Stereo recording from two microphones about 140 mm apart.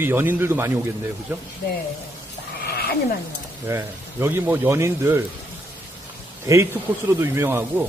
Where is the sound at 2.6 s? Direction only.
90° left.